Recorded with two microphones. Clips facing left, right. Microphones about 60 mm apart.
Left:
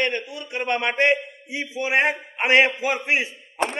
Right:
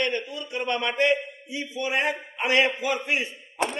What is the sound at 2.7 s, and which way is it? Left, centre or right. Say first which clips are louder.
Speech: left 2 dB; centre.